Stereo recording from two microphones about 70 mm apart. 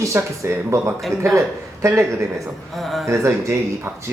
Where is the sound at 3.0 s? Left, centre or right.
Right.